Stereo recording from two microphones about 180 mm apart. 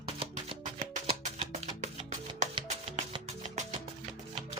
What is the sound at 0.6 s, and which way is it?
Music, 40° right (ahead or behind).